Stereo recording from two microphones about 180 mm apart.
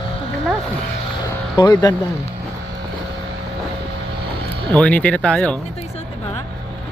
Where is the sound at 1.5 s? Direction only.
20° left (ahead or behind).